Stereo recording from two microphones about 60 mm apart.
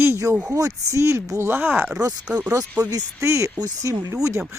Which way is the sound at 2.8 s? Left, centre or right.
Right.